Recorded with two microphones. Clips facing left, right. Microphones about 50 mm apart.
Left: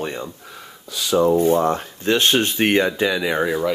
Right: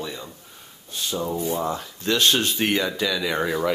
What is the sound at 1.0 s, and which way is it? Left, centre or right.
Speech, left.